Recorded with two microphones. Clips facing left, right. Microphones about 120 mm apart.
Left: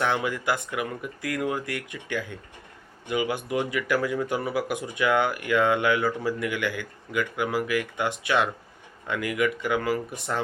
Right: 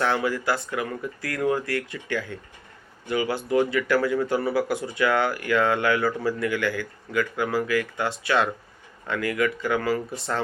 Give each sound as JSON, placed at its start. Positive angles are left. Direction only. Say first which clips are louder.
{"t": 0.0, "sound": "speech", "louder": "right 2 dB", "side_deg": 15}